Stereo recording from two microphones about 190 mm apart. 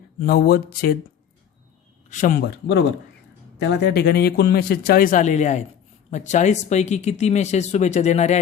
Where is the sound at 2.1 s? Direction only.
45° left (ahead or behind).